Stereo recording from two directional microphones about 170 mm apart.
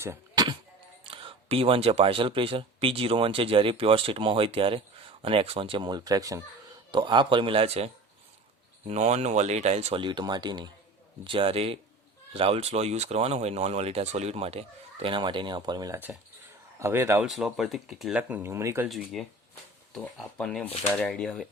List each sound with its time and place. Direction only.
0.0 s a sound: 15° right (ahead or behind)
1.0 s speech: 30° right (ahead or behind)
8.9 s speech: 40° right (ahead or behind); by 17.2 s 15° right (ahead or behind)
17.2 s speech: centre (ahead or behind)
18.9 s speech: centre (ahead or behind)